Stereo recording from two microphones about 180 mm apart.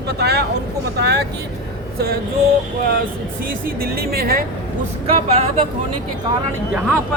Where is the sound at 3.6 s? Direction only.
55° right (ahead or behind).